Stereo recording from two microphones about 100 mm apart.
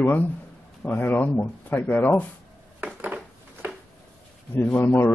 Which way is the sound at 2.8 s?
15° right (ahead or behind).